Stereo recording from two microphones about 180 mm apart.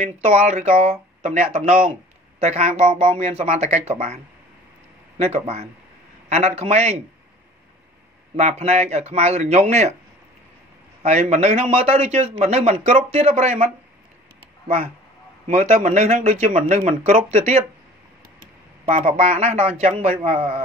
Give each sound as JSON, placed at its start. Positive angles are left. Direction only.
{"t": 0.0, "sound": "speech", "side_deg": -35}
{"t": 2.4, "sound": "speech", "side_deg": -40}
{"t": 8.4, "sound": "speech", "side_deg": -40}
{"t": 11.0, "sound": "speech", "side_deg": -40}
{"t": 15.4, "sound": "speech", "side_deg": -35}
{"t": 18.4, "sound": "a sound", "side_deg": -50}
{"t": 19.1, "sound": "speech", "side_deg": -35}